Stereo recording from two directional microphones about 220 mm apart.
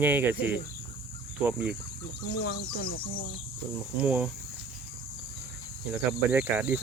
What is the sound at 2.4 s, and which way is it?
Speech, 45° left (ahead or behind).